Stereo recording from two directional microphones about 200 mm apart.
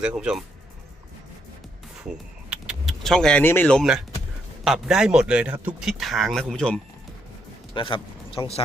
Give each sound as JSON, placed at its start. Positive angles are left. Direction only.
{"t": 0.0, "sound": "a man's voice", "side_deg": -5}
{"t": 2.0, "sound": "a man's voice", "side_deg": -5}
{"t": 7.7, "sound": "speech", "side_deg": 25}